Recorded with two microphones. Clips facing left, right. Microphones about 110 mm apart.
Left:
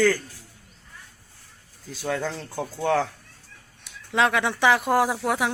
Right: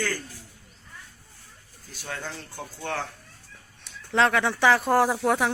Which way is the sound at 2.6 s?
90° left.